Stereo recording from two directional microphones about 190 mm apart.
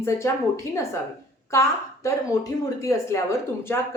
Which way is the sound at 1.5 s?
15° left (ahead or behind).